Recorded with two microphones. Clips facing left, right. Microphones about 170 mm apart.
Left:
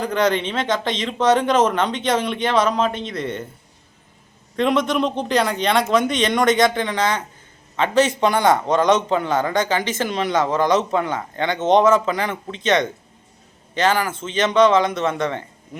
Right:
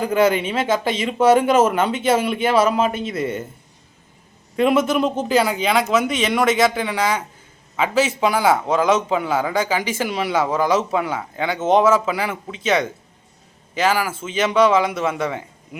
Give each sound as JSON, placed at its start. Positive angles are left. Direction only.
{"t": 0.0, "sound": "a man's voice", "side_deg": -5}
{"t": 4.5, "sound": "a man's voice", "side_deg": -5}